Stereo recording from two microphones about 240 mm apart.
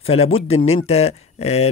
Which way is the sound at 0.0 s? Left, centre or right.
Left.